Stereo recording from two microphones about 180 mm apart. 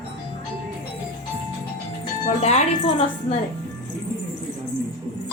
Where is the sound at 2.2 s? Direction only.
40° left (ahead or behind).